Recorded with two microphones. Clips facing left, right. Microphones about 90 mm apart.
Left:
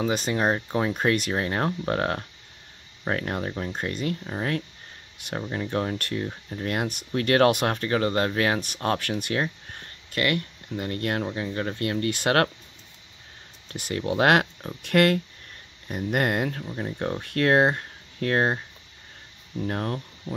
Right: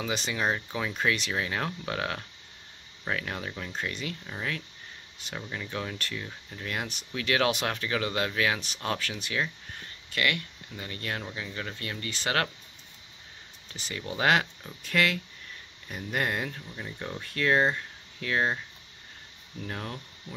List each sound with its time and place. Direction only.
0.0 s speech: 45° left (ahead or behind)
11.2 s speech: 35° left (ahead or behind)
11.7 s speech: 50° left (ahead or behind)
13.7 s speech: 55° left (ahead or behind)
16.6 s speech: 45° left (ahead or behind)
19.6 s speech: 45° left (ahead or behind)